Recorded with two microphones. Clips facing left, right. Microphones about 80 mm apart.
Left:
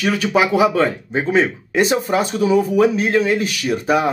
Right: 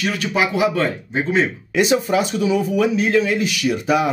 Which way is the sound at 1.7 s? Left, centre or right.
Left.